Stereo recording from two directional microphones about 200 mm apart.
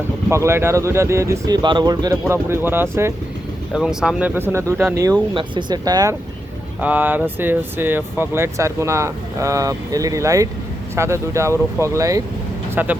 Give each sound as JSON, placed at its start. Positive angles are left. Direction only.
{"t": 0.3, "sound": "speech", "side_deg": -15}
{"t": 6.7, "sound": "speech", "side_deg": -10}